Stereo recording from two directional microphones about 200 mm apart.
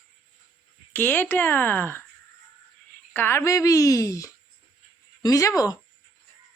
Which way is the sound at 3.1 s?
10° left (ahead or behind).